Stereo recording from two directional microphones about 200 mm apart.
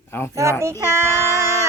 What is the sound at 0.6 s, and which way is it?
Speech, 15° right (ahead or behind).